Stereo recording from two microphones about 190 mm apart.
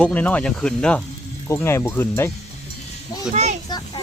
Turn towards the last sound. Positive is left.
turn(degrees=20)  # may be behind; listen again after turning